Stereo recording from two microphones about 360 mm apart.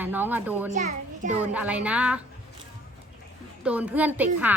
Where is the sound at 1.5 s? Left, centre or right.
Centre.